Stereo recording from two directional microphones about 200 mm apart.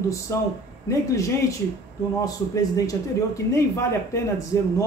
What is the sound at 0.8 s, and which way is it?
A man's voice, 15° left (ahead or behind).